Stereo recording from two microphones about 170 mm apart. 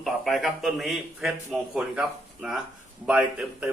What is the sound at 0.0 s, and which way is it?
A man's voice, centre (ahead or behind).